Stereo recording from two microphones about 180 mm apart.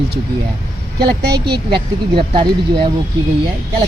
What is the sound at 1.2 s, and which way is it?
Speech, 65° right (ahead or behind).